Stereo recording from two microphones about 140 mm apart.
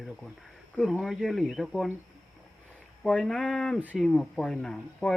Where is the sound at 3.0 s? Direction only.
5° left (ahead or behind).